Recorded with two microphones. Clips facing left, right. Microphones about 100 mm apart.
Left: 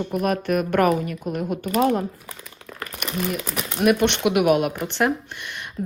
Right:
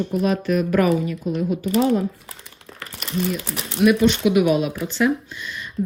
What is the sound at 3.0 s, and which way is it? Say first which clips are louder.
Speech: right 2 dB; 80° left.